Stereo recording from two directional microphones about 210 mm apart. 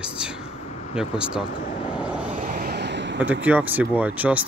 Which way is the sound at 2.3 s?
40° right (ahead or behind).